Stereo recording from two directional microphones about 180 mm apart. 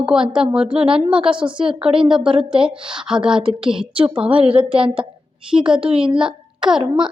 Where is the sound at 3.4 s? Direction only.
30° right (ahead or behind).